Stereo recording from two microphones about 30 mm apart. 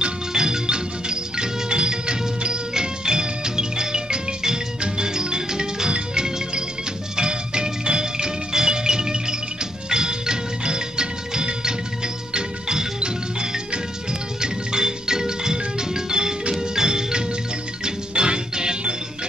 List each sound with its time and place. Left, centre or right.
0.0 s music: right